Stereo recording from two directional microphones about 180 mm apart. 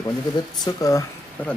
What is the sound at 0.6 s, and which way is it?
Speech, 20° left (ahead or behind).